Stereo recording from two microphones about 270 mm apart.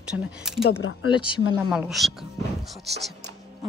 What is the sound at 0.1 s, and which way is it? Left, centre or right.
Speech, centre.